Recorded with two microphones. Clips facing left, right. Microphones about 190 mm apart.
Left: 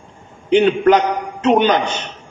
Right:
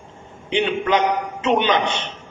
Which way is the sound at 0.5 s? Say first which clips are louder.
Left 8 dB; 40° left (ahead or behind).